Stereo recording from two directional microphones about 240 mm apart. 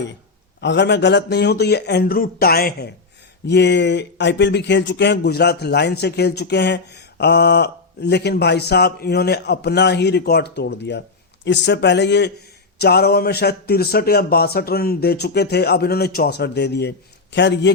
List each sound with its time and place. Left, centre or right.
0.6 s a man's voice: left